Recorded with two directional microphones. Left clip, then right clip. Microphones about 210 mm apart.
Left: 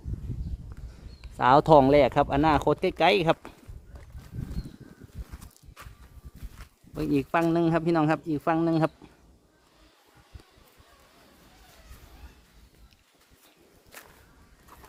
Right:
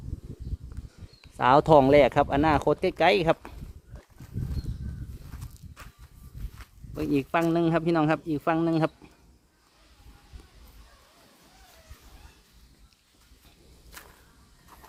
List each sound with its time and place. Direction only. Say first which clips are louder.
1.2 s speech: even; centre (ahead or behind)
6.9 s speech: even; 5° left (ahead or behind)